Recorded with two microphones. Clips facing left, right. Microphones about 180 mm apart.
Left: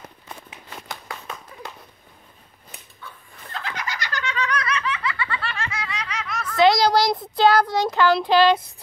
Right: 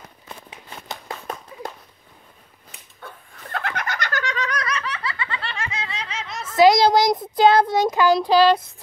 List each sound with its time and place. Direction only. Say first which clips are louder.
3.0 s bird: right 4 dB; 55° right (ahead or behind); by 5.1 s 35° right (ahead or behind)
5.1 s snicker: left 1 dB; 25° right (ahead or behind); by 8.5 s 5° right (ahead or behind)